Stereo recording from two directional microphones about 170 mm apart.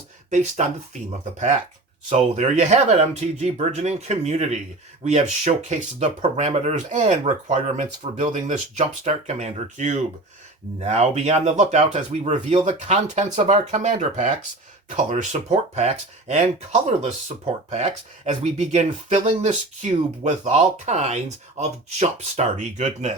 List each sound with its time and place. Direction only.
0.3 s speech: 45° right (ahead or behind)